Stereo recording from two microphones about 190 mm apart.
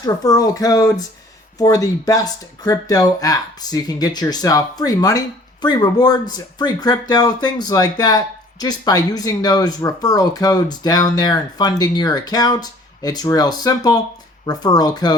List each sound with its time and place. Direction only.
0.0 s speech: 20° left (ahead or behind)